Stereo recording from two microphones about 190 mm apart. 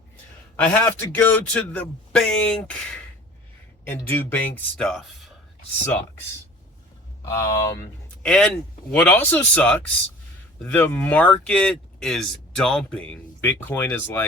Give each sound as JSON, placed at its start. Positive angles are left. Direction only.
{"t": 0.5, "sound": "speech", "side_deg": 10}
{"t": 7.3, "sound": "speech", "side_deg": 15}
{"t": 8.2, "sound": "speech", "side_deg": 5}